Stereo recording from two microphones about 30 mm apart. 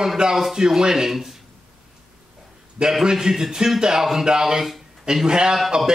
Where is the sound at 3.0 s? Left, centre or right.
Centre.